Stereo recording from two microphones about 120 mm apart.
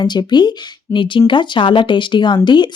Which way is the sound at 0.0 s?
35° left (ahead or behind).